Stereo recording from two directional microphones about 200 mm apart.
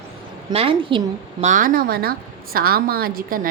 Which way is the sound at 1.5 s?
40° right (ahead or behind).